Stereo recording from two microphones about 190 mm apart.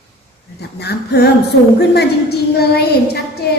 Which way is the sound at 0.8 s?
60° left (ahead or behind).